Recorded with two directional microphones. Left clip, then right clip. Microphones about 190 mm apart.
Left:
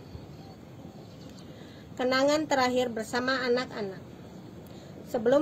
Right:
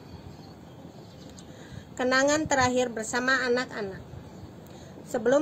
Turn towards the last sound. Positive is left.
turn(degrees=-15)  # may be behind; listen again after turning